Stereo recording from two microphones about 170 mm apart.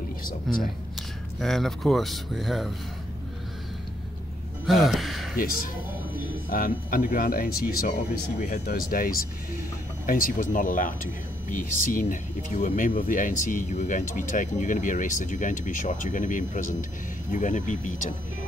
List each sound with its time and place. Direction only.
0.5 s speech: centre (ahead or behind)
4.6 s speech: centre (ahead or behind)
5.3 s speech: 55° left (ahead or behind)